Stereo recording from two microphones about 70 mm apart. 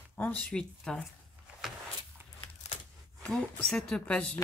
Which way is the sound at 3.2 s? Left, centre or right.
Centre.